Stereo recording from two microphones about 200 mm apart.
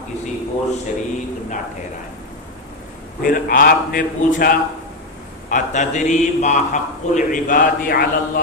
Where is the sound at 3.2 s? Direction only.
45° left (ahead or behind).